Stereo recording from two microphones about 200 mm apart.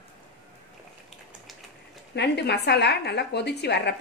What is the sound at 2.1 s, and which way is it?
A woman's voice, 55° left (ahead or behind).